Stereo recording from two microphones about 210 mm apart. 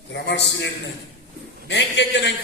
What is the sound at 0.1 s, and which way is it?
A man's voice, 55° left (ahead or behind).